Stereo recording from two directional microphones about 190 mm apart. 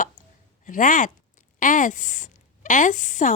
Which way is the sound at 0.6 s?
40° left (ahead or behind).